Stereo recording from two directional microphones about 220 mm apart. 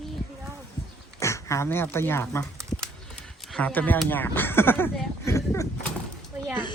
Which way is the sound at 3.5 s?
5° left (ahead or behind).